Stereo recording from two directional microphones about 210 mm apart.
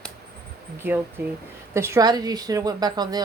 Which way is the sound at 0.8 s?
10° right (ahead or behind).